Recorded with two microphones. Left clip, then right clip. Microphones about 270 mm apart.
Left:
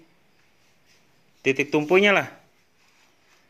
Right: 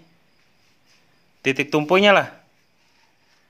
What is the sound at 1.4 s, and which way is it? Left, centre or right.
Speech, centre.